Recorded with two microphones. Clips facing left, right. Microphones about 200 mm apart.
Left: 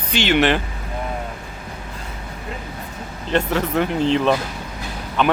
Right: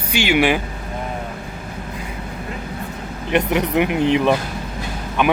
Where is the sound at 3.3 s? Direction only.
15° right (ahead or behind).